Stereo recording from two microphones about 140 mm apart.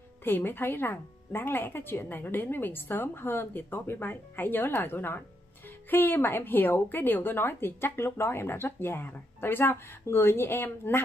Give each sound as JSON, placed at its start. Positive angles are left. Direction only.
{"t": 0.2, "sound": "a woman's voice", "side_deg": 15}